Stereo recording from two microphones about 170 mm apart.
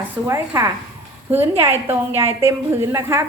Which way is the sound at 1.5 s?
35° right (ahead or behind).